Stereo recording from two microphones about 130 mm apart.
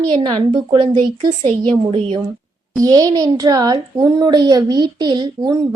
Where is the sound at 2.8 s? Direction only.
30° right (ahead or behind).